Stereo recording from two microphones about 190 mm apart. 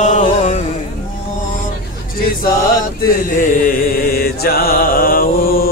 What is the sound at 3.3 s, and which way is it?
Mantra, 45° left (ahead or behind).